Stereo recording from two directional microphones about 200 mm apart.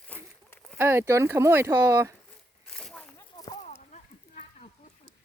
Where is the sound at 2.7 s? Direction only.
5° left (ahead or behind).